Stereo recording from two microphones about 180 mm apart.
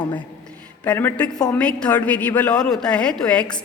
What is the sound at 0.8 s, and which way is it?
A woman's voice, 10° left (ahead or behind).